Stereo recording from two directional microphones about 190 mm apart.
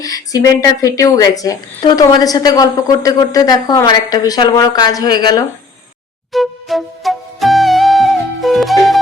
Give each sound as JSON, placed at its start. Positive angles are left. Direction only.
{"t": 0.0, "sound": "a woman's voice", "side_deg": 20}
{"t": 6.3, "sound": "music", "side_deg": 0}